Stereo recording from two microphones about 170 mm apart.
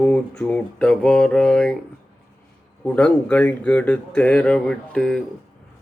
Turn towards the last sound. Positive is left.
turn(degrees=5)  # may be behind; listen again after turning